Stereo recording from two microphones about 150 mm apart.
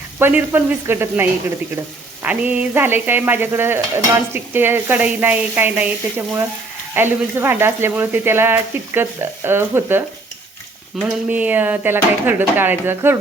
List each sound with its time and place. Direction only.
0.2 s stir: 15° right (ahead or behind)